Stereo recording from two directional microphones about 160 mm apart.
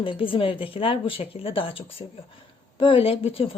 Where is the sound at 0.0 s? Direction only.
35° left (ahead or behind).